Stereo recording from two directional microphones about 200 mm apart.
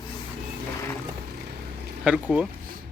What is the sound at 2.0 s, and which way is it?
Speech, 5° right (ahead or behind).